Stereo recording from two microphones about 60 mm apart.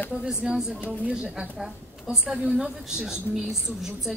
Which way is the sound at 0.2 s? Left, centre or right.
Centre.